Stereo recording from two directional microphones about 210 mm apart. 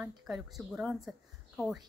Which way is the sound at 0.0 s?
Centre (ahead or behind).